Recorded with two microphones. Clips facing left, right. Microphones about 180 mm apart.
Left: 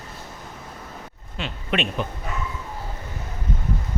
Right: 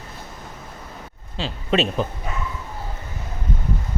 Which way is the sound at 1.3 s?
30° right (ahead or behind).